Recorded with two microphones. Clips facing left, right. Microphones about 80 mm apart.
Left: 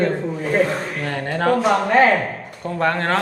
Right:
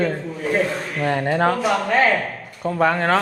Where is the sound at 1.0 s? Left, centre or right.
Centre.